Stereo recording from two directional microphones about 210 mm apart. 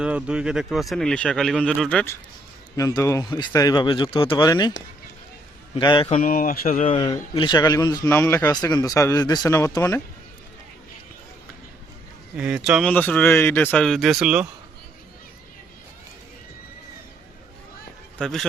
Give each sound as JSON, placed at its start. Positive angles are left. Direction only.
{"t": 0.0, "sound": "speech", "side_deg": -5}
{"t": 5.7, "sound": "speech", "side_deg": 25}
{"t": 6.1, "sound": "speech", "side_deg": 40}
{"t": 6.9, "sound": "speech", "side_deg": 25}
{"t": 12.4, "sound": "speech", "side_deg": -5}
{"t": 18.2, "sound": "speech", "side_deg": 0}